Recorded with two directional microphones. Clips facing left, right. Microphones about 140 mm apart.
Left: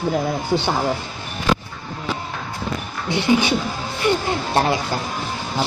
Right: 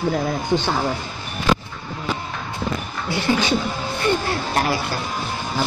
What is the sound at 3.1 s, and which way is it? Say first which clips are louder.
Speech: left 2 dB; 15° left (ahead or behind).